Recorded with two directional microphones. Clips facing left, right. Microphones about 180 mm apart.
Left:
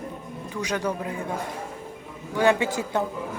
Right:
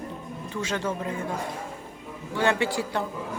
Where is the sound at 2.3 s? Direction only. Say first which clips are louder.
Left 3 dB; 15° left (ahead or behind).